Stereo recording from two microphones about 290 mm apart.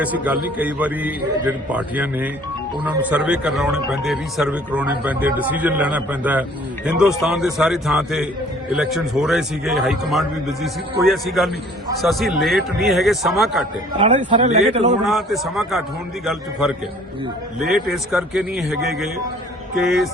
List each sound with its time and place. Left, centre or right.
0.0 s speech: centre
14.0 s a man's voice: right
15.0 s speech: centre